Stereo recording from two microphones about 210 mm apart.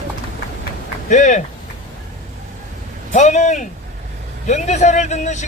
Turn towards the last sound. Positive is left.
turn(degrees=35)  # may be behind; listen again after turning